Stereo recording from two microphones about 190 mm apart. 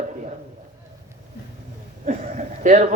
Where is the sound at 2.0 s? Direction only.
40° right (ahead or behind).